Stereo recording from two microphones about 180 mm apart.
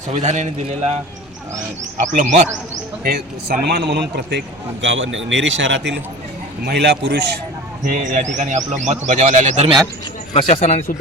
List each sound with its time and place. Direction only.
0.1 s a man's voice: 40° right (ahead or behind)
2.0 s a man's voice: 45° right (ahead or behind)
3.0 s a man's voice: 55° right (ahead or behind); by 6.0 s 80° right
6.7 s a man's voice: 70° right (ahead or behind)
7.9 s a man's voice: 50° right (ahead or behind)
10.3 s speech: 35° left (ahead or behind)